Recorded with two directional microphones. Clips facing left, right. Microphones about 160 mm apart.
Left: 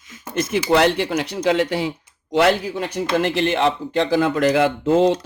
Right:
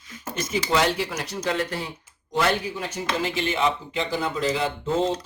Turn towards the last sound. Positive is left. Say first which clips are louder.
# left 8 dB
turn(degrees=70)  # may be behind; listen again after turning